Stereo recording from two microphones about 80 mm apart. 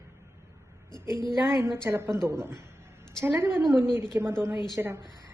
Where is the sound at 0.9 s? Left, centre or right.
Left.